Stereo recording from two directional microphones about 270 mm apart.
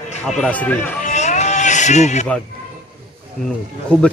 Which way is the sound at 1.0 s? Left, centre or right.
Left.